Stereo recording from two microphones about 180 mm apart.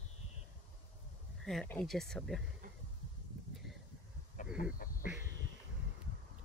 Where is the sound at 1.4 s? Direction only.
5° left (ahead or behind).